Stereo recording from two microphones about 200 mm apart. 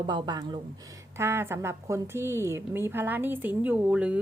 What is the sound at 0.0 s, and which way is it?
A woman's voice, 20° right (ahead or behind).